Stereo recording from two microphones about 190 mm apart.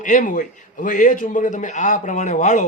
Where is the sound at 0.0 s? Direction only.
40° left (ahead or behind).